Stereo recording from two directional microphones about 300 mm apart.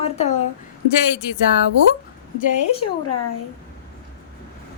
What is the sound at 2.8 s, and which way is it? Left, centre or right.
Speech, left.